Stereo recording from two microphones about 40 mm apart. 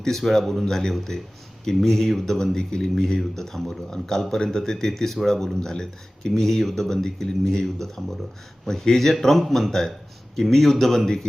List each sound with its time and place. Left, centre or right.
0.0 s speech: centre